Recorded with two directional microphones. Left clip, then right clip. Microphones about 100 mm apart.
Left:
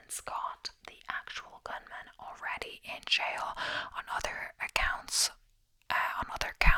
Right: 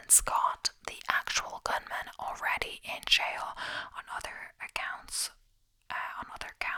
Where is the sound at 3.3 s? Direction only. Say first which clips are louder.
Left 1 dB; 5° left (ahead or behind).